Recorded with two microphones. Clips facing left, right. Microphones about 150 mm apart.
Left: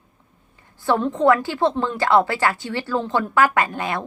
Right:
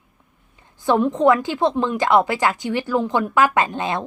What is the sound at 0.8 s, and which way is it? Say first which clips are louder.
A woman's voice: right 2 dB; 15° right (ahead or behind).